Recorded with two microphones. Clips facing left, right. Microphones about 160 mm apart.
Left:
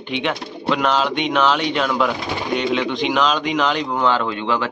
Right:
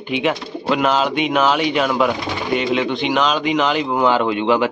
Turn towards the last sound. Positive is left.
turn(degrees=-15)  # may be behind; listen again after turning